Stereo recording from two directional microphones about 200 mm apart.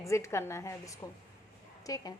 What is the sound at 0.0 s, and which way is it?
A woman's voice, 15° left (ahead or behind).